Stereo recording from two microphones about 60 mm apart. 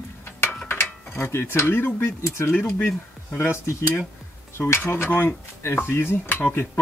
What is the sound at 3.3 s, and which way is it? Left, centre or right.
Speech, left.